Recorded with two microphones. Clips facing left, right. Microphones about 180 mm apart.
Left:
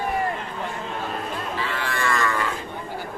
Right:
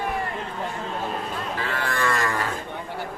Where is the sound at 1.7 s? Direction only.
45° right (ahead or behind).